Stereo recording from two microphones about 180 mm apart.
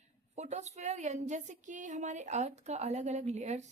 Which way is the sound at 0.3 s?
40° right (ahead or behind).